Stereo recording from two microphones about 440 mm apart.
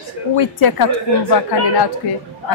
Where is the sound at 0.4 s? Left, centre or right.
Left.